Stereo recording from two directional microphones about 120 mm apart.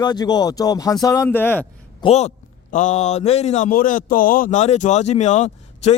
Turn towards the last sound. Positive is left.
turn(degrees=70)  # may be behind; listen again after turning